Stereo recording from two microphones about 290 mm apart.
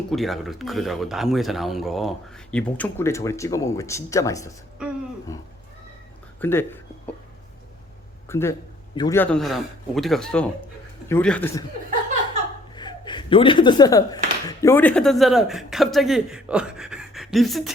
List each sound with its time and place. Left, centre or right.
0.1 s a man's voice: centre
8.3 s a man's voice: centre
12.7 s speech: centre